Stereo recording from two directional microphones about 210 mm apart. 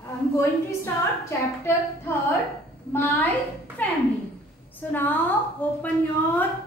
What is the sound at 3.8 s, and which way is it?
A woman's voice, 10° left (ahead or behind).